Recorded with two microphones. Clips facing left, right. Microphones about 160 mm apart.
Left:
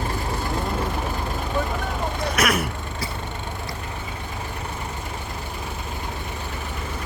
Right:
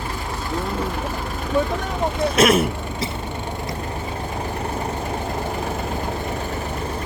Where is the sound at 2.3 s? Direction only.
25° right (ahead or behind).